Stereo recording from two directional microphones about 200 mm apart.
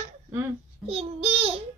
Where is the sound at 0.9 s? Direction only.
30° right (ahead or behind).